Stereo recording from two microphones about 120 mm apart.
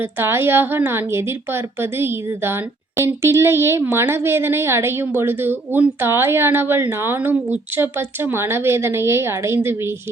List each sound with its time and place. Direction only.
0.0 s a woman's voice: 20° right (ahead or behind)